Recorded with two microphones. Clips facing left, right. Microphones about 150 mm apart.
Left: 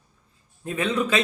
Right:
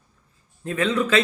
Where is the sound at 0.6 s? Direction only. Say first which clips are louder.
Right 2 dB; 15° left (ahead or behind).